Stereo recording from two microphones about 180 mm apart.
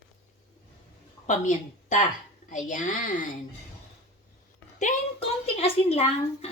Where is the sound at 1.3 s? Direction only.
45° left (ahead or behind).